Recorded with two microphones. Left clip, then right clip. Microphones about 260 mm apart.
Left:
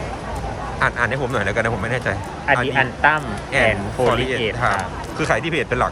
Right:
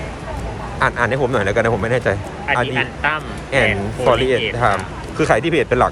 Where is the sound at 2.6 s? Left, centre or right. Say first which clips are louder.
Left 3 dB; left.